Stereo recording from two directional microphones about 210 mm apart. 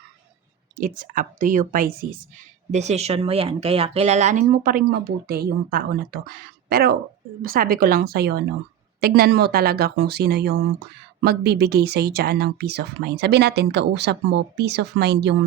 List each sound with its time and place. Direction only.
0.8 s speech: 40° right (ahead or behind)
2.7 s speech: 30° right (ahead or behind); by 15.4 s 55° right (ahead or behind)